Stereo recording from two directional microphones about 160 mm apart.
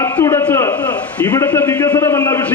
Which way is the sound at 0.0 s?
15° left (ahead or behind).